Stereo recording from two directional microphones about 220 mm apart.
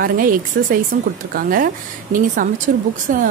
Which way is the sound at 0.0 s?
40° right (ahead or behind).